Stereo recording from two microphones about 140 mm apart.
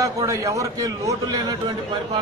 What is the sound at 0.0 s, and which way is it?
A man's voice, 25° right (ahead or behind).